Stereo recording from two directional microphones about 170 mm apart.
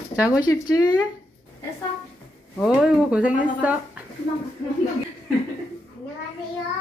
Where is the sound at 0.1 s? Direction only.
5° right (ahead or behind).